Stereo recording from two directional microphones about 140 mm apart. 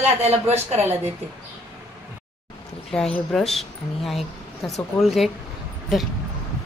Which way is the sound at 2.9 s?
5° left (ahead or behind).